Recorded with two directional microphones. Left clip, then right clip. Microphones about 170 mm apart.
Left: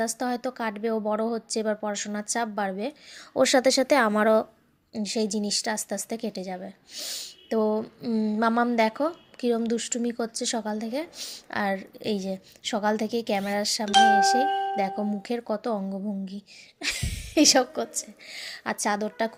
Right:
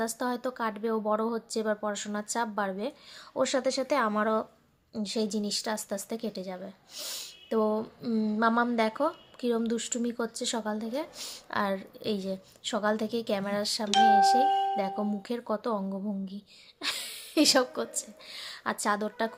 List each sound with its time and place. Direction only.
0.0 s speech: 10° left (ahead or behind)
3.3 s speech: 30° left (ahead or behind); by 6.7 s 15° left (ahead or behind)
6.9 s speech: centre (ahead or behind)
11.2 s speech: centre (ahead or behind)
11.6 s a woman's voice: 10° left (ahead or behind)